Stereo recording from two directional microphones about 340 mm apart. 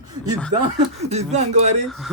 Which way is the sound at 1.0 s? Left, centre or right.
Centre.